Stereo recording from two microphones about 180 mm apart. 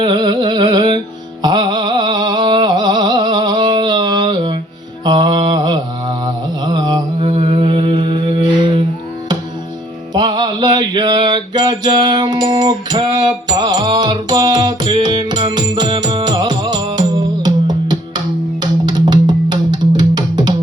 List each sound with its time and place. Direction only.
0.0 s music: 25° right (ahead or behind)
5.0 s mantra: 25° right (ahead or behind)
10.2 s mantra: 25° right (ahead or behind)
18.6 s music: 25° right (ahead or behind)